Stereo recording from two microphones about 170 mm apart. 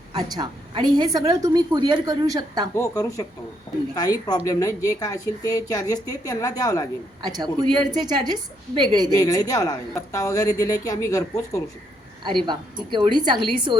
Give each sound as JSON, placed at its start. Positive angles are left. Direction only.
{"t": 0.1, "sound": "a woman's voice", "side_deg": -25}
{"t": 2.7, "sound": "speech", "side_deg": 15}
{"t": 7.2, "sound": "a woman's voice", "side_deg": -25}
{"t": 9.1, "sound": "speech", "side_deg": 20}
{"t": 12.5, "sound": "a woman's voice", "side_deg": -25}